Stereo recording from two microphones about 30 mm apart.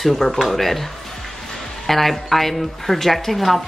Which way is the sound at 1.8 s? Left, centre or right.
Centre.